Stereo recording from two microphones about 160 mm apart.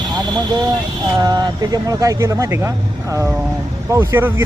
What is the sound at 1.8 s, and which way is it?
Speech, 20° right (ahead or behind).